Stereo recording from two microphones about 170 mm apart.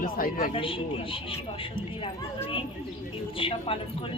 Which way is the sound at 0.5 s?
30° left (ahead or behind).